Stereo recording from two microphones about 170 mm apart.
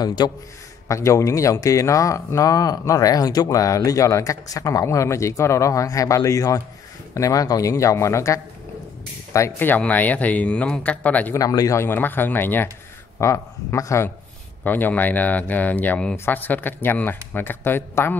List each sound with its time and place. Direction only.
0.0 s speech: 25° left (ahead or behind); by 11.3 s 10° left (ahead or behind)
11.3 s speech: 20° left (ahead or behind)